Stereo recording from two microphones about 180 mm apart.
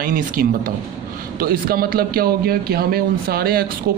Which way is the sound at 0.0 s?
50° right (ahead or behind).